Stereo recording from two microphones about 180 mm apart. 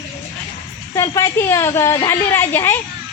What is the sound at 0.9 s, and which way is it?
A woman's voice, 15° left (ahead or behind).